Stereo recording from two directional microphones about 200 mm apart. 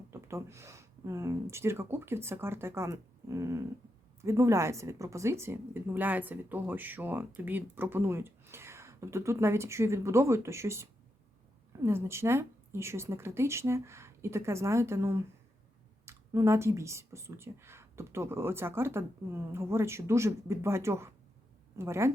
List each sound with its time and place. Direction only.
0.1 s a woman's voice: 15° right (ahead or behind)